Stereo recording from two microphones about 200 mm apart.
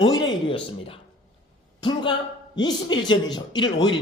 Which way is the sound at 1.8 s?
25° left (ahead or behind).